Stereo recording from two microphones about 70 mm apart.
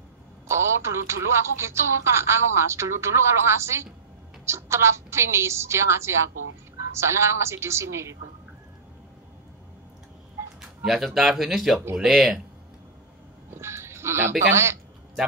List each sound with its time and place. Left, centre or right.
0.5 s a woman's voice: right
10.4 s a sound: right
10.8 s speech: centre
13.6 s sheep: right
14.5 s a woman's voice: right